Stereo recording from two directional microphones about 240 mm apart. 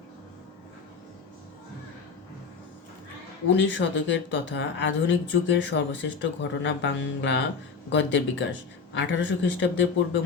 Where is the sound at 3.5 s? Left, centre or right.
Left.